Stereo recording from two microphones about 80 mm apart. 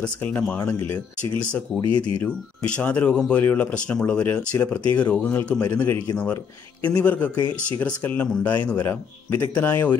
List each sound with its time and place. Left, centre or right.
0.0 s a man's voice: left
1.8 s speech: left
2.2 s a man's voice: centre
7.0 s a man's voice: centre